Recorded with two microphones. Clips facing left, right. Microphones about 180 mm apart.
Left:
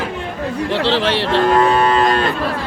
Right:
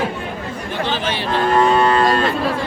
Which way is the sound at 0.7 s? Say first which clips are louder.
Left 5 dB; 75° left (ahead or behind).